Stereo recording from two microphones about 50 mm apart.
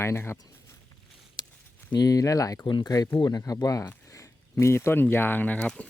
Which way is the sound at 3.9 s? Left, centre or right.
Left.